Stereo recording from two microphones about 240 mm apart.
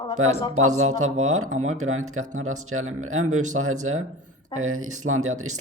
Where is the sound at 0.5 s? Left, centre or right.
Right.